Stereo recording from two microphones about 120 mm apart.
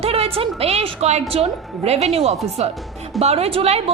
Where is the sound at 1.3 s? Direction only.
60° right (ahead or behind).